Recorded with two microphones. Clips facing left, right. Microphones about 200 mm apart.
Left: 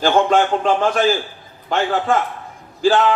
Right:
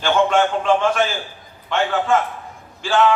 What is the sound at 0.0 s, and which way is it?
A man's voice, 35° left (ahead or behind).